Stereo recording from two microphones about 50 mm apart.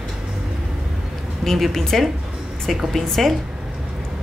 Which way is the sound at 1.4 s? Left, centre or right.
Centre.